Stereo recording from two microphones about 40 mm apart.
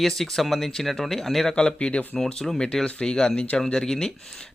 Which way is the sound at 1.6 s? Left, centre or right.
Left.